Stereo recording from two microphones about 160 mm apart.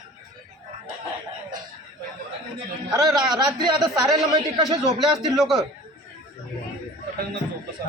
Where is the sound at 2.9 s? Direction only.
20° right (ahead or behind).